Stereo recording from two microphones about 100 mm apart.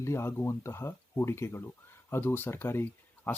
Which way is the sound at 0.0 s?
30° left (ahead or behind).